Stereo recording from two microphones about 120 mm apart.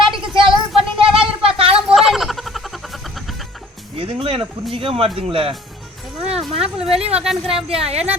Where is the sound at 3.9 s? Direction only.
50° right (ahead or behind).